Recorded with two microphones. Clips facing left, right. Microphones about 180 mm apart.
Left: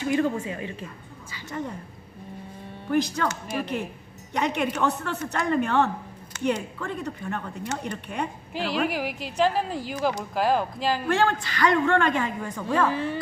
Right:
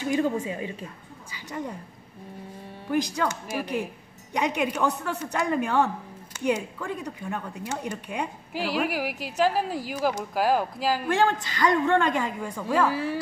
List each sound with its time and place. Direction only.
1.3 s a woman's voice: 15° right (ahead or behind)
2.9 s speech: 15° right (ahead or behind)